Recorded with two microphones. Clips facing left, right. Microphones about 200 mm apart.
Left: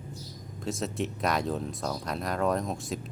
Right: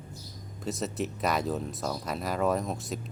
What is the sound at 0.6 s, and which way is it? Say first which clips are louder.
Speech: even; centre (ahead or behind).